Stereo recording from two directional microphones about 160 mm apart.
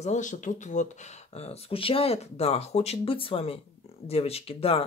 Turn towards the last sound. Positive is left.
turn(degrees=35)  # may be behind; listen again after turning